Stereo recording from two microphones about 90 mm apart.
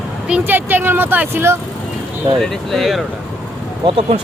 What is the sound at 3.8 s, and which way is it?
Speech, 80° right.